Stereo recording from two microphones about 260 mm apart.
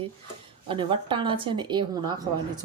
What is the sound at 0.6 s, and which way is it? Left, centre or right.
A woman's voice, centre.